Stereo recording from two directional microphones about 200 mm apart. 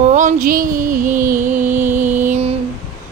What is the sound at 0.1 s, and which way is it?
Music, 35° right (ahead or behind).